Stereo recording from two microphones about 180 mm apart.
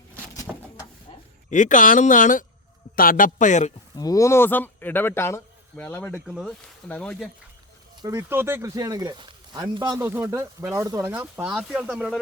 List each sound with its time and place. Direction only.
1.5 s speech: 45° left (ahead or behind)
3.9 s speech: 20° left (ahead or behind)
6.1 s speech: 5° right (ahead or behind)
8.0 s speech: 15° right (ahead or behind)
10.0 s speech: 15° right (ahead or behind)
11.2 s speech: 5° right (ahead or behind)